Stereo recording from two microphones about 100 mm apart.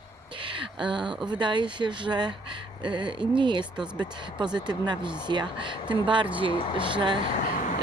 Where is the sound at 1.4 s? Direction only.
50° right (ahead or behind).